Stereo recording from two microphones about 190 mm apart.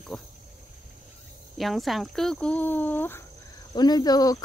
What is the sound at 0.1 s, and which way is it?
Speech, 5° left (ahead or behind).